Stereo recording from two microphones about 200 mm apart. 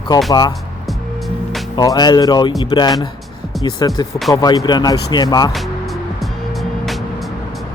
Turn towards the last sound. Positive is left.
turn(degrees=0)  # may be behind; listen again after turning